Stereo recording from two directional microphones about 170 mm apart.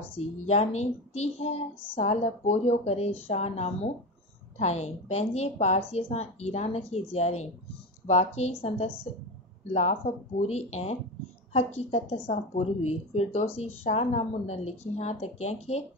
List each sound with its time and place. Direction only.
0.1 s a woman's voice: 40° left (ahead or behind)